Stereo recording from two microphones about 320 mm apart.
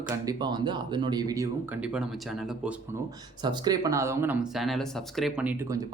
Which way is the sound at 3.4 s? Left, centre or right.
Centre.